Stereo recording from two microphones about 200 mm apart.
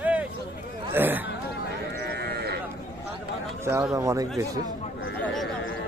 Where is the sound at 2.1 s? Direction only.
55° right (ahead or behind).